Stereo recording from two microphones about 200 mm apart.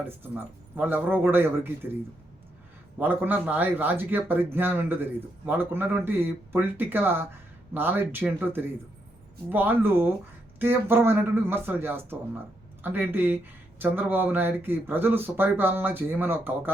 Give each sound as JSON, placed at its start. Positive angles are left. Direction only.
{"t": 0.0, "sound": "speech", "side_deg": -10}
{"t": 3.0, "sound": "speech", "side_deg": -10}